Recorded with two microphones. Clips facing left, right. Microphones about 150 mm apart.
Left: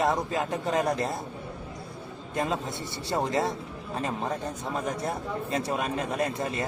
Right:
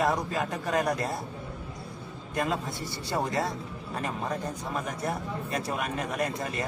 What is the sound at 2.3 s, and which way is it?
Speech, 20° left (ahead or behind).